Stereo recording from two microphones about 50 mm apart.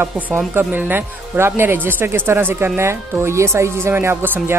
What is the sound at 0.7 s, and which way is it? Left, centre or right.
Speech, right.